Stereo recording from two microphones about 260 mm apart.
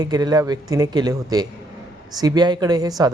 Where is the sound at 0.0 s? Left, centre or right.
Centre.